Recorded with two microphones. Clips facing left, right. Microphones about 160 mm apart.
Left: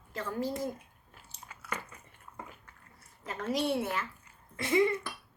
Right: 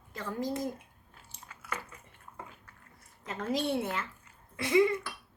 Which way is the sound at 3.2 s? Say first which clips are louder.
Even; 25° right (ahead or behind).